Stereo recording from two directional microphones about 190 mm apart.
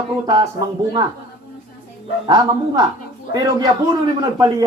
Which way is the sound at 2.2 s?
20° right (ahead or behind).